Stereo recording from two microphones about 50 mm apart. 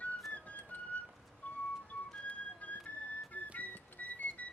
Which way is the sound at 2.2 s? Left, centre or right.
Left.